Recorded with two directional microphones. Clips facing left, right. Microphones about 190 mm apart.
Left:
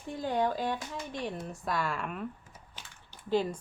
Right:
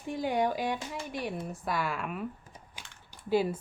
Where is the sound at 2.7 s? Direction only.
10° right (ahead or behind).